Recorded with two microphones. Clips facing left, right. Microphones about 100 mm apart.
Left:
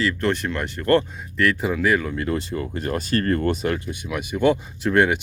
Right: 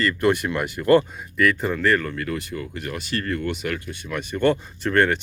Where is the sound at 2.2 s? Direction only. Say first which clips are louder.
Left 3 dB; 30° left (ahead or behind).